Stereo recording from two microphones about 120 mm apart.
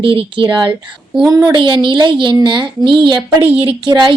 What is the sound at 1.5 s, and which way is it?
Speech, 40° right (ahead or behind).